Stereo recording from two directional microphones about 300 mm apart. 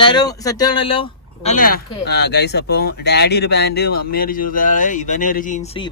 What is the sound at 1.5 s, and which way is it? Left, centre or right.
Speech, left.